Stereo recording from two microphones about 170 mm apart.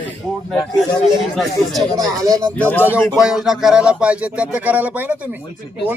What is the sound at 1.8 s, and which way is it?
Speech, 20° right (ahead or behind).